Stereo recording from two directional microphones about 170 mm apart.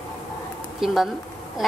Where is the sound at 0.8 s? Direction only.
Centre (ahead or behind).